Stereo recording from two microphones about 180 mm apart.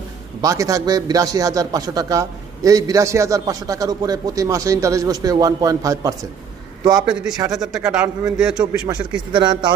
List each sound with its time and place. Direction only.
0.4 s a man's voice: 20° right (ahead or behind)
6.9 s a man's voice: 5° right (ahead or behind)
7.3 s a man's voice: 20° right (ahead or behind); by 8.6 s 5° right (ahead or behind)
9.3 s a man's voice: 25° right (ahead or behind)